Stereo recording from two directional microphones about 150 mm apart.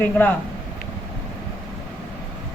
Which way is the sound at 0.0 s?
15° left (ahead or behind).